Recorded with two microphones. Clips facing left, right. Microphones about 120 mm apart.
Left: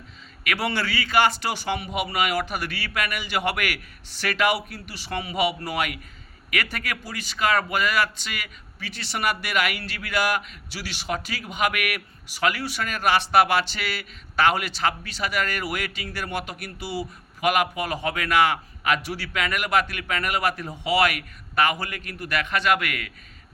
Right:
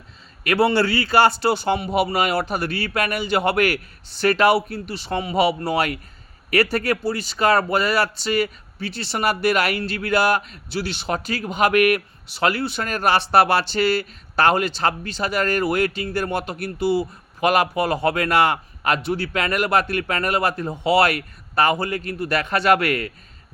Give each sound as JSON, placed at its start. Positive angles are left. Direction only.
{"t": 0.4, "sound": "a man's voice", "side_deg": -30}